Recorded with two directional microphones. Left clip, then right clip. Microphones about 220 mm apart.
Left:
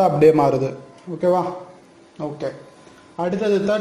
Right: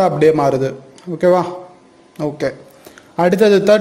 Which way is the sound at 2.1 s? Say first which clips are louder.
Right 7 dB; 40° right (ahead or behind).